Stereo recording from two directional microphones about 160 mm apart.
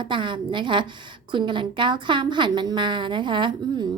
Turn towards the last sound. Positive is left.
turn(degrees=-30)  # may be behind; listen again after turning